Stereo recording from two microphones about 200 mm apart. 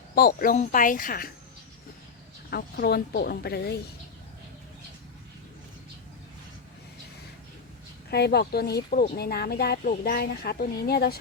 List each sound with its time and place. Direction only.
0.1 s speech: 50° left (ahead or behind)
2.5 s speech: 50° left (ahead or behind)
8.1 s speech: 55° left (ahead or behind)